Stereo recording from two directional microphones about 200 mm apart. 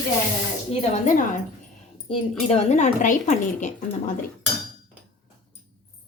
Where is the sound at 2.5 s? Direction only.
35° left (ahead or behind).